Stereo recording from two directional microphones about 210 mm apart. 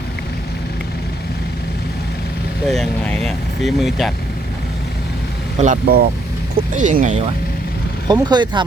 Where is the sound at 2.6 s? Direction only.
Centre (ahead or behind).